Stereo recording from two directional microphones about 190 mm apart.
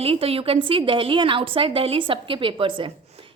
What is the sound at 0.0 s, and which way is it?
A woman's voice, 30° right (ahead or behind).